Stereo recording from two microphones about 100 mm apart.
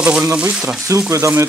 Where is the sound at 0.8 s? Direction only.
30° right (ahead or behind).